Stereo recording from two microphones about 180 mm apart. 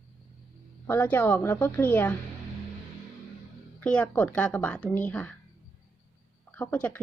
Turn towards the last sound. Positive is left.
turn(degrees=10)  # may be behind; listen again after turning